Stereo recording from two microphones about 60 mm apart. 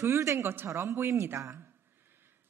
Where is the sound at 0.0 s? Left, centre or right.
Right.